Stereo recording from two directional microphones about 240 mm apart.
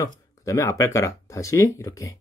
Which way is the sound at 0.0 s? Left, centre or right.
Centre.